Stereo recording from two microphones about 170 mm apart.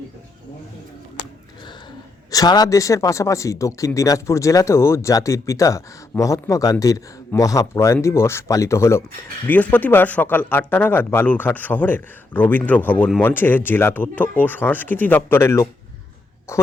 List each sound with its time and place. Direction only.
2.3 s speech: 20° left (ahead or behind)